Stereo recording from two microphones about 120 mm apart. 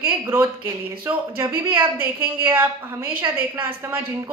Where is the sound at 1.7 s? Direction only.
15° right (ahead or behind).